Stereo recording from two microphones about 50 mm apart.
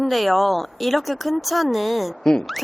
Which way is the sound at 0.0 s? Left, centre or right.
Centre.